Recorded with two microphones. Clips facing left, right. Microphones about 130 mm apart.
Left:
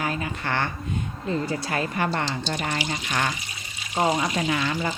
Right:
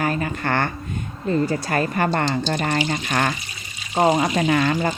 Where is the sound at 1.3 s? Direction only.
45° right (ahead or behind).